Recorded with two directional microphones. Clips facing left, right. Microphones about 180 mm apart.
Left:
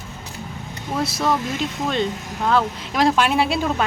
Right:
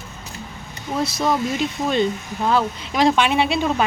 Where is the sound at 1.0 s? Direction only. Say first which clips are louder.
Right 1 dB; 5° left (ahead or behind).